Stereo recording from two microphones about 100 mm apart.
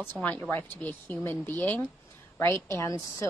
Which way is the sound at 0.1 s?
15° left (ahead or behind).